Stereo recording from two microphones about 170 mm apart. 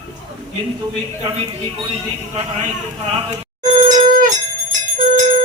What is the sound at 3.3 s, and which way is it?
Telephone bell ringing, 35° right (ahead or behind).